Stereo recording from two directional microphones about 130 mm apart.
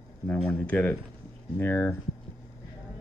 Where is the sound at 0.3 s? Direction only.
10° left (ahead or behind).